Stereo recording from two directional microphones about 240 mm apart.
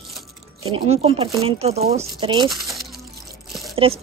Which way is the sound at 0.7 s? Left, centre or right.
Right.